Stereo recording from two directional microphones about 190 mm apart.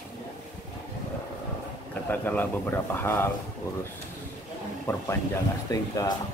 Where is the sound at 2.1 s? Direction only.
10° left (ahead or behind).